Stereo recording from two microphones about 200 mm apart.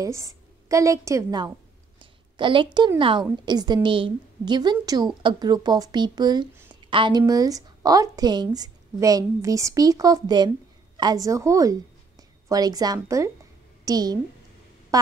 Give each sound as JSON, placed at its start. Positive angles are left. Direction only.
{"t": 0.0, "sound": "a woman's voice", "side_deg": -15}